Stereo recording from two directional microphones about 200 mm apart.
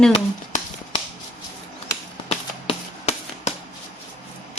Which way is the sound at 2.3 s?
35° left (ahead or behind).